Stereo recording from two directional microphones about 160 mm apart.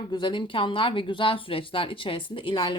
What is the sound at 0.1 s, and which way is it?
Speech, 30° left (ahead or behind).